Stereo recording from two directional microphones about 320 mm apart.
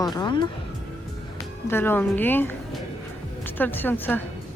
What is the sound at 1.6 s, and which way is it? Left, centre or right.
A woman's voice, centre.